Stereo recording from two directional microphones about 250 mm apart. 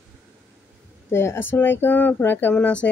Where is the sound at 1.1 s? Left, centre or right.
Centre.